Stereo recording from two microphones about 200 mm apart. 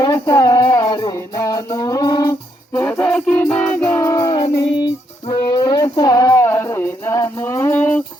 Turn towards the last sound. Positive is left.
turn(degrees=10)  # may be behind; listen again after turning